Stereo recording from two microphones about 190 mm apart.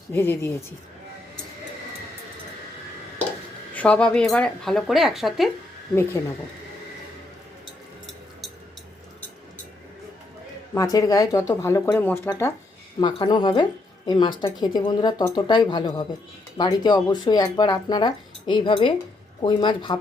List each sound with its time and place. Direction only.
0.1 s speech: 10° left (ahead or behind)
3.8 s speech: 5° left (ahead or behind)
10.8 s speech: 20° left (ahead or behind)
13.0 s speech: 25° left (ahead or behind)